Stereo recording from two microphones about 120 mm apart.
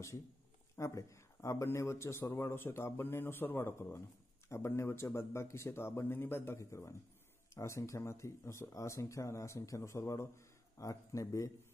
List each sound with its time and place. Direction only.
0.7 s speech: 25° left (ahead or behind)